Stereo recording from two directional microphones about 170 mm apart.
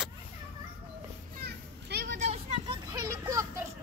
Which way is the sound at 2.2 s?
40° right (ahead or behind).